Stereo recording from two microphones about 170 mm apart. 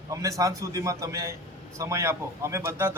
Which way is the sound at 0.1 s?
20° right (ahead or behind).